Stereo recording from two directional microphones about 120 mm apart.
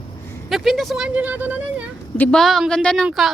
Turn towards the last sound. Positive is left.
turn(degrees=0)  # may be behind; listen again after turning